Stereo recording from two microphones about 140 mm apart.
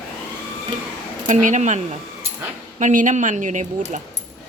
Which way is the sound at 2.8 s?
65° right (ahead or behind).